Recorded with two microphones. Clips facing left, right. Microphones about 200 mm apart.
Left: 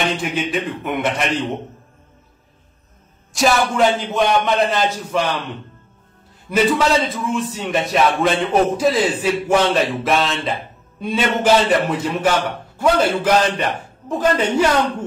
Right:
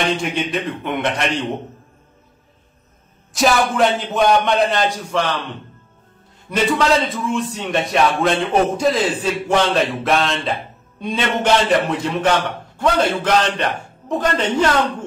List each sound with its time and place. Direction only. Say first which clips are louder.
0.2 s a man's voice: even; centre (ahead or behind)
3.3 s a man's voice: even; centre (ahead or behind)
6.5 s a man's voice: left 1 dB; 5° left (ahead or behind)